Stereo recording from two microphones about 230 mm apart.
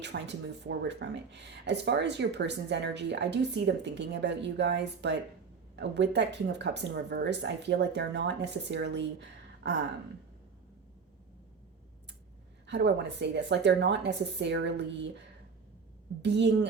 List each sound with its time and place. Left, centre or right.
0.0 s speech: right
9.6 s a sound: right
12.6 s speech: right
16.2 s speech: right